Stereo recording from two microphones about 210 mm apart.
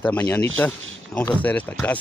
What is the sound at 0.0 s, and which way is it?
Speech, 5° left (ahead or behind).